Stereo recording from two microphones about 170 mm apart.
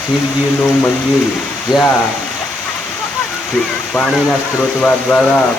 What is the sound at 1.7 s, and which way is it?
Speech, 5° left (ahead or behind).